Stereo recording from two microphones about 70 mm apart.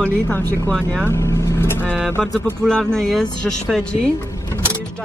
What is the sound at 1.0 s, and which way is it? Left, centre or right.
Vehicle, left.